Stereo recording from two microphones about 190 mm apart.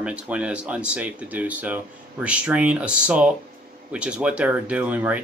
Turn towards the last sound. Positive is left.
turn(degrees=-10)  # may be behind; listen again after turning